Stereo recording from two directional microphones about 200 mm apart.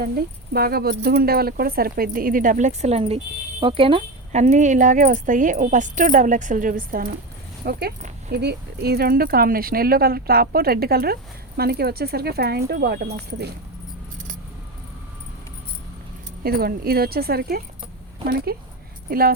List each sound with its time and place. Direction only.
0.5 s speech: 50° right (ahead or behind)
16.4 s speech: 50° right (ahead or behind)